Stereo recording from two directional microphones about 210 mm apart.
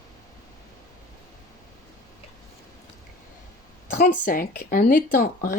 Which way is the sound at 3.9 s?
55° left (ahead or behind).